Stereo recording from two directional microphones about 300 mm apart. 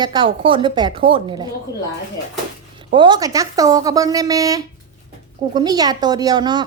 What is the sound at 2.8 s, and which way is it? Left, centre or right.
Speech, centre.